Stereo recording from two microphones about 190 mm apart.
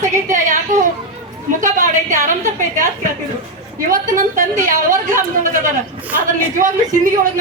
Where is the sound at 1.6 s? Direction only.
40° right (ahead or behind).